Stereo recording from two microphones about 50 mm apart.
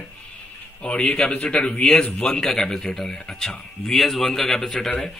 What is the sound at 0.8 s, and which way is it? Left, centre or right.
A man's voice, centre.